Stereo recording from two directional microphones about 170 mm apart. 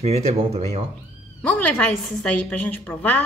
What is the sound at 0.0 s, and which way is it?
Speech, 40° right (ahead or behind).